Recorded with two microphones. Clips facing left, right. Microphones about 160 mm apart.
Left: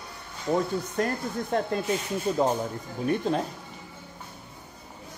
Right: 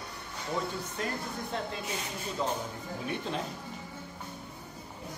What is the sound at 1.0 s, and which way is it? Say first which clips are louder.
Speech: left 7 dB; 45° left (ahead or behind).